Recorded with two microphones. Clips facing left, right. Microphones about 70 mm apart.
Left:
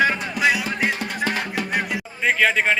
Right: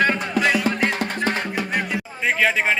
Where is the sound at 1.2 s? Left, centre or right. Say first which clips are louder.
Left 1 dB; right.